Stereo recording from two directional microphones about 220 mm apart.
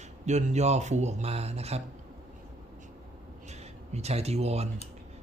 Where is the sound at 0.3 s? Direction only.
30° right (ahead or behind).